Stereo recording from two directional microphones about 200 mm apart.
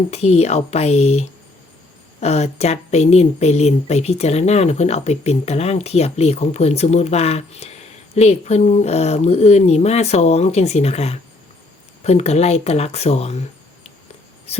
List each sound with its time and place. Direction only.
0.1 s speech: 30° left (ahead or behind)
2.2 s speech: 30° left (ahead or behind)